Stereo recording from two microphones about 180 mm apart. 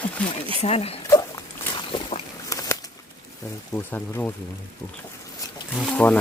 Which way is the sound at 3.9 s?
10° left (ahead or behind).